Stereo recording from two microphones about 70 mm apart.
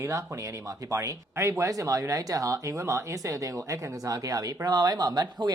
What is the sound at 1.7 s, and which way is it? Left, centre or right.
Speech, right.